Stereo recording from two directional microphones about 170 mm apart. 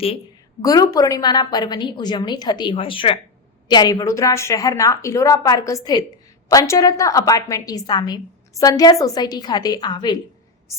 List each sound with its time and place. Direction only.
0.6 s a woman's voice: 20° left (ahead or behind)